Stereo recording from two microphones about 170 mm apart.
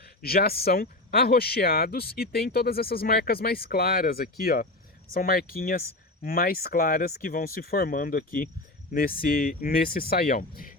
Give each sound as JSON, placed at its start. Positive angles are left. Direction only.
{"t": 0.2, "sound": "speech", "side_deg": 65}